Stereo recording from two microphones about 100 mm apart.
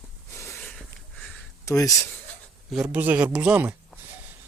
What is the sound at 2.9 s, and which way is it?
Speech, 15° right (ahead or behind).